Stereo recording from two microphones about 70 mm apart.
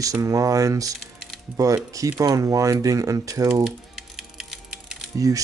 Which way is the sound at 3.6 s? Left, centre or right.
Centre.